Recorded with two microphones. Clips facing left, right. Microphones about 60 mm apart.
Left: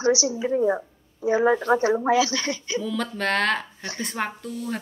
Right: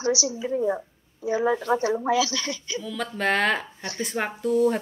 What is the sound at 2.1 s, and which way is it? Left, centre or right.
Speech, left.